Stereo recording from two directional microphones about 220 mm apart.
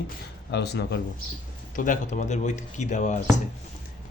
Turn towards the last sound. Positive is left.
turn(degrees=35)  # may be behind; listen again after turning